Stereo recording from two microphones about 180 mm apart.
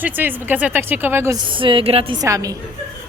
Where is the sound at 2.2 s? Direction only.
20° right (ahead or behind).